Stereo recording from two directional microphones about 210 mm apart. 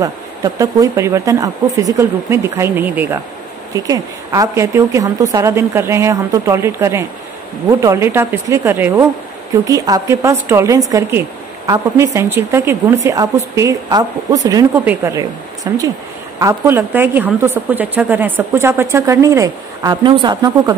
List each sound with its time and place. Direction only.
0.0 s speech: 15° right (ahead or behind)